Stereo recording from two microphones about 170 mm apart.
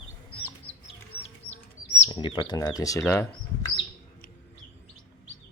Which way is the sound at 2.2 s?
25° left (ahead or behind).